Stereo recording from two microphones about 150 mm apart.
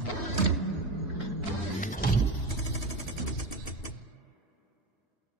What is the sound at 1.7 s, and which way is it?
Vehicle, 60° left (ahead or behind).